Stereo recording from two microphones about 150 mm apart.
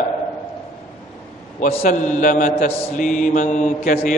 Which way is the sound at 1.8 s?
55° left (ahead or behind).